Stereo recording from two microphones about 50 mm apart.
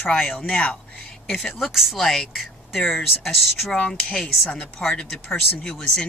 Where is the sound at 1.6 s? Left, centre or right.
Centre.